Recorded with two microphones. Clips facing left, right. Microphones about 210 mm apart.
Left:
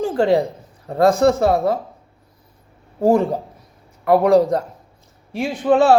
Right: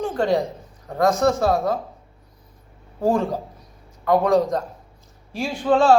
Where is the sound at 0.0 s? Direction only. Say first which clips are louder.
Left 4 dB; 30° left (ahead or behind).